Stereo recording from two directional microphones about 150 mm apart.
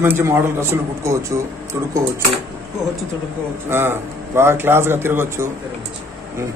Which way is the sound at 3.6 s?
15° right (ahead or behind).